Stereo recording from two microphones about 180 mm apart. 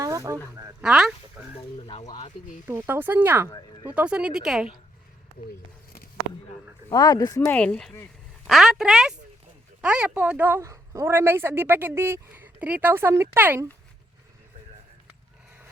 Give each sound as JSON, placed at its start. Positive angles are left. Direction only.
{"t": 0.0, "sound": "a sound", "side_deg": -15}
{"t": 0.8, "sound": "speech", "side_deg": -5}
{"t": 1.5, "sound": "speech", "side_deg": 30}
{"t": 2.6, "sound": "a woman's voice", "side_deg": -10}
{"t": 6.9, "sound": "a woman's voice", "side_deg": 20}